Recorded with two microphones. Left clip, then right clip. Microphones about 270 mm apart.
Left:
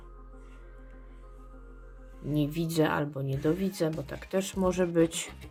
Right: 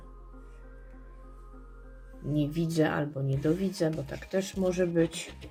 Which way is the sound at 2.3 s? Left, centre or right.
Centre.